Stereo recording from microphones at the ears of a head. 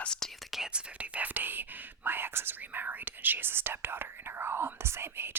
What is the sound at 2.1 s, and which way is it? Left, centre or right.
Speech, right.